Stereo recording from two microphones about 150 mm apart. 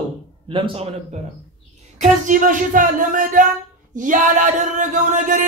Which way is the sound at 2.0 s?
60° right (ahead or behind).